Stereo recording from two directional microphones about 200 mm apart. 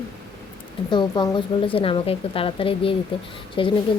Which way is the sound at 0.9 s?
20° left (ahead or behind).